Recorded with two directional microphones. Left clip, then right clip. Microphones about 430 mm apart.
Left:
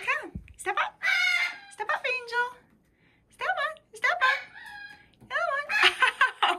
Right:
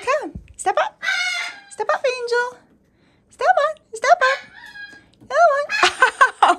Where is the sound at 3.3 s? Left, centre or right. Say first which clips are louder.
Right 12 dB; centre.